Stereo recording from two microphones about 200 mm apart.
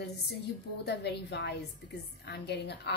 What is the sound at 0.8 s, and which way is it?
A woman's voice, 55° left (ahead or behind).